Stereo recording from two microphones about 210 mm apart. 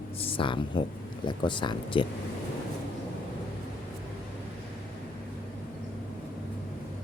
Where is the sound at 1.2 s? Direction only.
20° left (ahead or behind).